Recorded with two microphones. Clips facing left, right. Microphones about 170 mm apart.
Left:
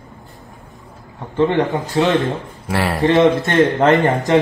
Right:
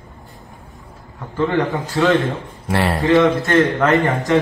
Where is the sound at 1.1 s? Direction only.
25° left (ahead or behind).